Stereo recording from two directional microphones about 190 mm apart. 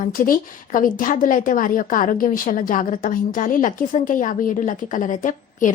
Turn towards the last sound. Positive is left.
turn(degrees=40)  # may be behind; listen again after turning